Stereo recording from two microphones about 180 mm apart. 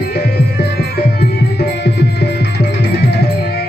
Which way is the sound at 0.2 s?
65° left (ahead or behind).